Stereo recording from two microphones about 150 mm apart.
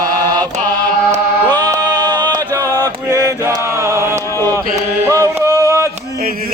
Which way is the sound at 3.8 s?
20° right (ahead or behind).